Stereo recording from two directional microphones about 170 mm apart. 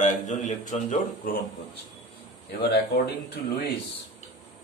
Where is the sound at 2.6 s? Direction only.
80° left.